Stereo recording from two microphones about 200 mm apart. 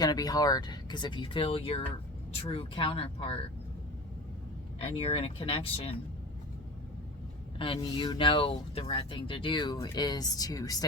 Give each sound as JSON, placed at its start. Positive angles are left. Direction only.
{"t": 0.0, "sound": "speech", "side_deg": 20}
{"t": 4.8, "sound": "speech", "side_deg": 30}
{"t": 7.6, "sound": "speech", "side_deg": 25}